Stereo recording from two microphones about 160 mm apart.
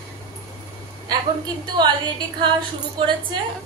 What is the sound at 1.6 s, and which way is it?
Speech, 25° right (ahead or behind).